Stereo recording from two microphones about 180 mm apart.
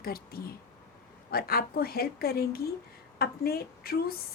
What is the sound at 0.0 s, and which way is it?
Speech, 55° left (ahead or behind).